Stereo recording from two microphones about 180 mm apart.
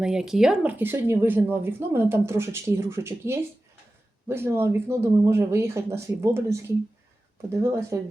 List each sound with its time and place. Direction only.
0.0 s speech: 5° right (ahead or behind)
7.6 s speech: 15° right (ahead or behind)